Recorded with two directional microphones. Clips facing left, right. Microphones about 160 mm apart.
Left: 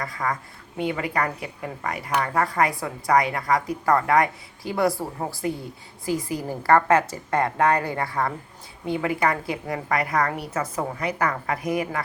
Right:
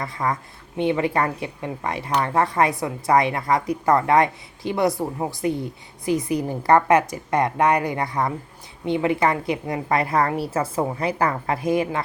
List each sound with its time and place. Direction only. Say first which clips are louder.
0.0 s a woman's voice: right 2 dB; 25° right (ahead or behind)